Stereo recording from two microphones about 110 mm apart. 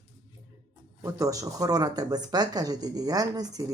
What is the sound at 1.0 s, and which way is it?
Speech, 30° right (ahead or behind).